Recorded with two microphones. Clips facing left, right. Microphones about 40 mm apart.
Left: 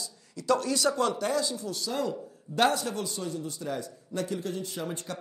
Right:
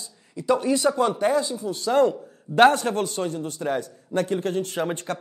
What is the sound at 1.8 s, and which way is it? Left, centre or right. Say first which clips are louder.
A man's voice: right 13 dB; right.